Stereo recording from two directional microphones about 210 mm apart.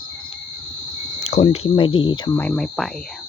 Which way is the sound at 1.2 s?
30° left (ahead or behind).